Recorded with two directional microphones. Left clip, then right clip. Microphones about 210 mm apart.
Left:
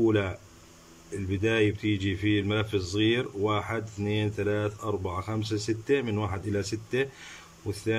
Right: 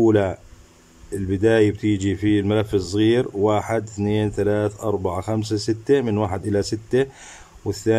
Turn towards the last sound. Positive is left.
turn(degrees=-25)  # may be behind; listen again after turning